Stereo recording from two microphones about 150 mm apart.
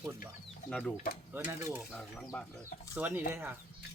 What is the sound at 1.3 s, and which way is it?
Dishes, 15° right (ahead or behind).